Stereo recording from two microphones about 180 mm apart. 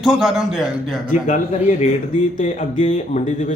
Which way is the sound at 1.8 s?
40° left (ahead or behind).